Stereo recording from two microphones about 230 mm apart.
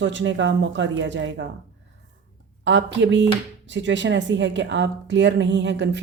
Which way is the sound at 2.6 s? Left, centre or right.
Right.